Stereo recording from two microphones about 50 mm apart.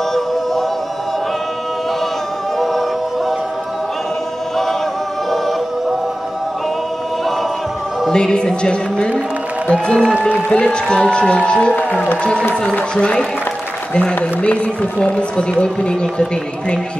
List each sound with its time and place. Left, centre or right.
8.1 s a woman's voice: centre
14.1 s a man's voice: left